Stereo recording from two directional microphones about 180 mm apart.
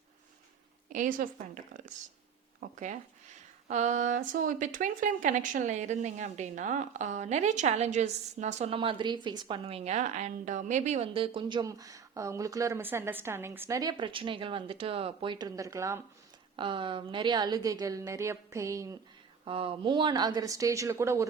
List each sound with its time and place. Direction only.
0.9 s a woman's voice: 50° right (ahead or behind)
2.6 s a woman's voice: 45° right (ahead or behind); by 16.0 s 15° right (ahead or behind)
16.6 s a woman's voice: 25° right (ahead or behind)
19.5 s a woman's voice: 30° right (ahead or behind); by 21.2 s 15° right (ahead or behind)